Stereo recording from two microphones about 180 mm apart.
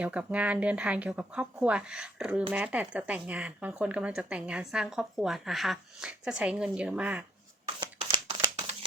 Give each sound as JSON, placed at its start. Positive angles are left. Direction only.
{"t": 0.0, "sound": "speech", "side_deg": -5}
{"t": 7.8, "sound": "crumpling", "side_deg": -25}